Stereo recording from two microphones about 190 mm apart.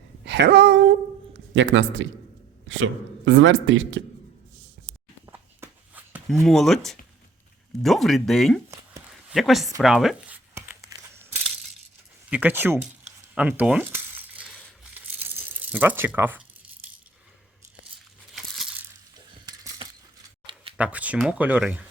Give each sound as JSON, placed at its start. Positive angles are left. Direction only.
{"t": 0.3, "sound": "a sound", "side_deg": -60}
{"t": 1.5, "sound": "a man's voice", "side_deg": -75}
{"t": 2.6, "sound": "a man's voice", "side_deg": -90}
{"t": 5.2, "sound": "walk", "side_deg": -15}
{"t": 6.4, "sound": "speech", "side_deg": 0}
{"t": 9.8, "sound": "tearing", "side_deg": 0}
{"t": 12.3, "sound": "speech", "side_deg": -10}
{"t": 13.3, "sound": "coin", "side_deg": -5}
{"t": 15.2, "sound": "a sound", "side_deg": -10}
{"t": 18.3, "sound": "a sound", "side_deg": 0}
{"t": 19.3, "sound": "cutlery", "side_deg": -20}
{"t": 20.7, "sound": "speech", "side_deg": -5}